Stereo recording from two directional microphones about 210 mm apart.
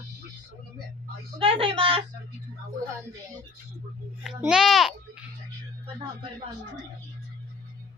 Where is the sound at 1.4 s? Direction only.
25° right (ahead or behind).